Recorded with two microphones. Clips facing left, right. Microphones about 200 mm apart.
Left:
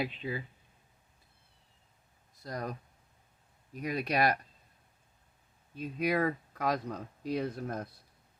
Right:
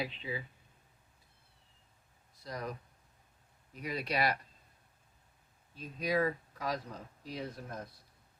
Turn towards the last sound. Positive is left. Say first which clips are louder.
# left 8 dB
turn(degrees=60)  # may be behind; listen again after turning